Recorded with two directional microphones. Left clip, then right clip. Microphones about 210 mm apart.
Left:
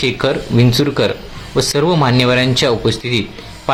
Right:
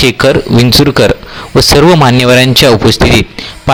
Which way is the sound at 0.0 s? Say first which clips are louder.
Right 9 dB; 45° right (ahead or behind).